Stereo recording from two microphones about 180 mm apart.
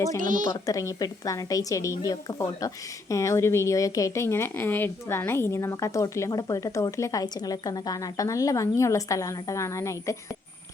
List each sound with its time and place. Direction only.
0.2 s speech: 45° right (ahead or behind)
0.5 s a woman's voice: 20° left (ahead or behind)